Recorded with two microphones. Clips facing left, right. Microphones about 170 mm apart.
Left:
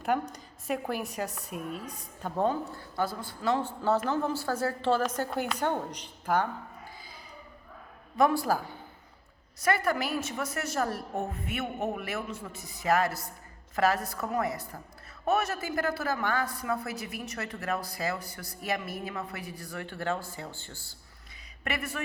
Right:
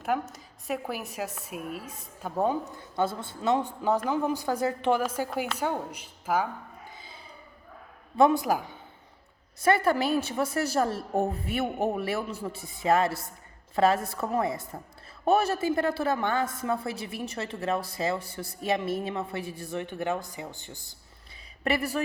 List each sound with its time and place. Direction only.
0.0 s a woman's voice: centre (ahead or behind)
2.7 s a woman's voice: 25° right (ahead or behind); by 6.5 s 5° right (ahead or behind)
8.2 s a woman's voice: 20° right (ahead or behind)
21.6 s speech: 35° right (ahead or behind)